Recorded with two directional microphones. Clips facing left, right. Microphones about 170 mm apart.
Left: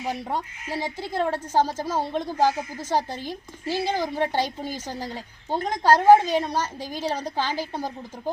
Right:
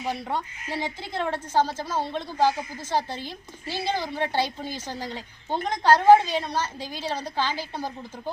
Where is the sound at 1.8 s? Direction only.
15° left (ahead or behind).